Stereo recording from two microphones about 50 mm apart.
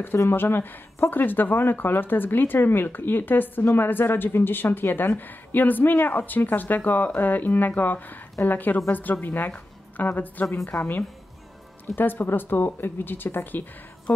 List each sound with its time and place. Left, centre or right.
0.3 s speech: left
1.1 s speech: left